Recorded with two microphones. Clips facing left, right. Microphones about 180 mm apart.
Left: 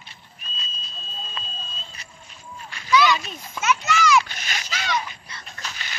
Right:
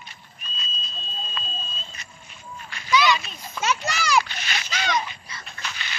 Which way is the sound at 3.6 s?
35° right (ahead or behind).